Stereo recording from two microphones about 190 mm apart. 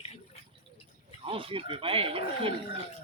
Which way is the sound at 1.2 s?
30° right (ahead or behind).